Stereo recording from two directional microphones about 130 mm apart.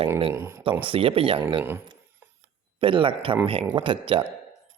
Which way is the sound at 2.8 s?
40° right (ahead or behind).